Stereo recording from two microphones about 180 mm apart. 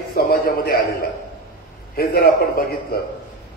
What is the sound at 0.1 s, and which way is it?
Speech, 55° left (ahead or behind).